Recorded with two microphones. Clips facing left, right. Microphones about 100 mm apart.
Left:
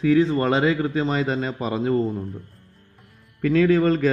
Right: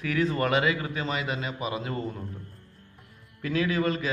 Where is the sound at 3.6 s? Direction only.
40° left (ahead or behind).